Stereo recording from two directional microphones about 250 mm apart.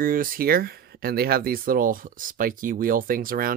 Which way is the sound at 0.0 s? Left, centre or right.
Right.